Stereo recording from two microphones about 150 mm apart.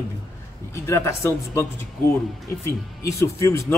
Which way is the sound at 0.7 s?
20° left (ahead or behind).